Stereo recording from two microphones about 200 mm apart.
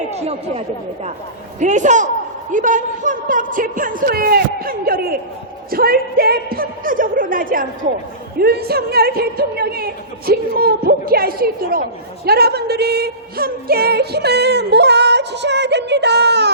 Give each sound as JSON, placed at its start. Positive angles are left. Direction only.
{"t": 0.2, "sound": "a woman's voice", "side_deg": -30}